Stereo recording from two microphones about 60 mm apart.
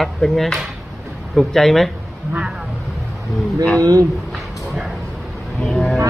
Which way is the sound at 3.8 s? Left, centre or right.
Right.